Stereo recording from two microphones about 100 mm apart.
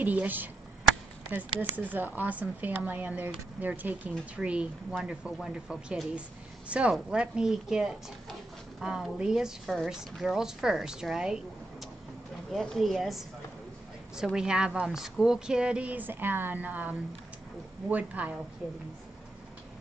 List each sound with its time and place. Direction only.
0.0 s a woman's voice: 15° right (ahead or behind)
12.5 s a woman's voice: centre (ahead or behind)